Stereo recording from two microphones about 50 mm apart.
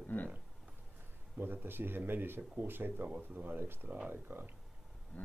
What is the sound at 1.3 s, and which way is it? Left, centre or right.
Speech, right.